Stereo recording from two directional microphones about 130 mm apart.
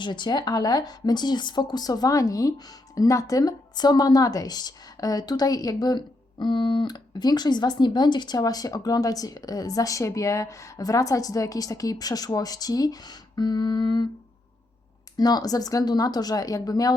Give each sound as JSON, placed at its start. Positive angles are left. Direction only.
{"t": 0.0, "sound": "speech", "side_deg": 35}
{"t": 15.2, "sound": "speech", "side_deg": 30}